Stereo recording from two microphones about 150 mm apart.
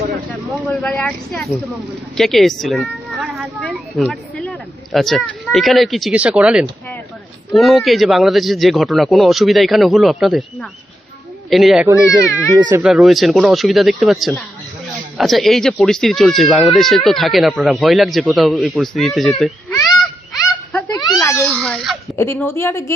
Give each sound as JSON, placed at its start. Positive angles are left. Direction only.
{"t": 0.7, "sound": "speech", "side_deg": 10}
{"t": 12.0, "sound": "speech", "side_deg": 20}
{"t": 12.7, "sound": "speech", "side_deg": -5}
{"t": 20.9, "sound": "baby cry", "side_deg": 25}
{"t": 22.1, "sound": "speech", "side_deg": 15}